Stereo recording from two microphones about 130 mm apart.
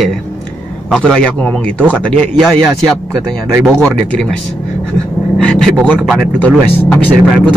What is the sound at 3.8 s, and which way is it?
Speech, 5° left (ahead or behind).